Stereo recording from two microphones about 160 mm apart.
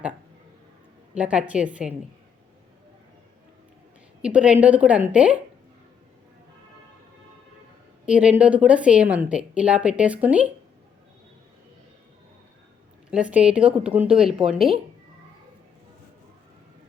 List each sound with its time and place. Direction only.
1.1 s a woman's voice: 5° right (ahead or behind)
4.2 s a woman's voice: 5° right (ahead or behind)
8.0 s a woman's voice: 5° right (ahead or behind)
13.1 s a woman's voice: 5° right (ahead or behind)